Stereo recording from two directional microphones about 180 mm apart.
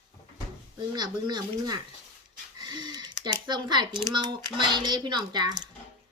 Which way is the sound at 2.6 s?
25° right (ahead or behind).